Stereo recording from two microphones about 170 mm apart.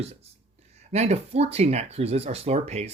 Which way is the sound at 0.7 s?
40° right (ahead or behind).